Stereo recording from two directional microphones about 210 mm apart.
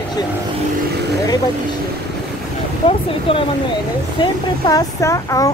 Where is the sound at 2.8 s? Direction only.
25° left (ahead or behind).